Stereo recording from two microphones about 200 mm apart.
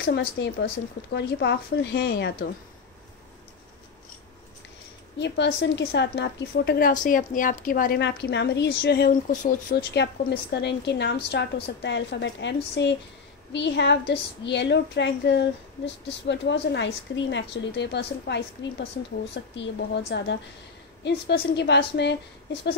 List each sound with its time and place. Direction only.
0.0 s a woman's voice: 55° left (ahead or behind)
5.2 s a woman's voice: 60° left (ahead or behind)
6.9 s a woman's voice: 40° left (ahead or behind)
9.3 s speech: 40° left (ahead or behind)
10.0 s a woman's voice: 60° left (ahead or behind)